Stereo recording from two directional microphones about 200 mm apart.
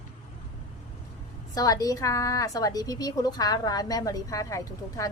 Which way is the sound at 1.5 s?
20° left (ahead or behind).